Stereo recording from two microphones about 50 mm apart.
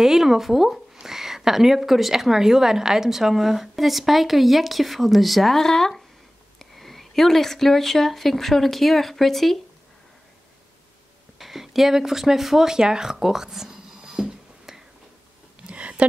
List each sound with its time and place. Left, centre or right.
0.0 s a woman's voice: centre
11.3 s speech: centre
15.6 s a sound: right